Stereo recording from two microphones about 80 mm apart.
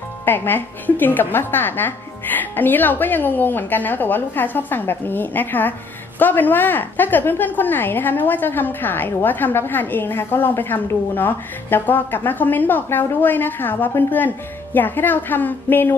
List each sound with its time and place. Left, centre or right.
0.2 s a woman's voice: left